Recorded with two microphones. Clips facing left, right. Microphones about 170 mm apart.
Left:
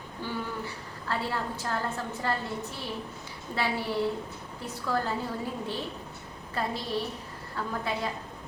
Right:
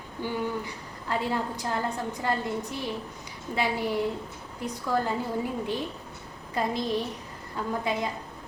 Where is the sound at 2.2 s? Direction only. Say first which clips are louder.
Right 3 dB; 15° right (ahead or behind).